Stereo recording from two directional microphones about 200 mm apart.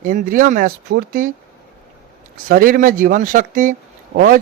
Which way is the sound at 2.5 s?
45° right (ahead or behind).